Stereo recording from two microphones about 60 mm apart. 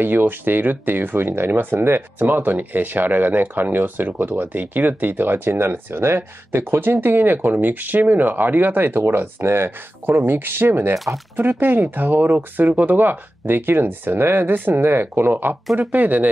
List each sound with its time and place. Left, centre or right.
0.0 s speech: right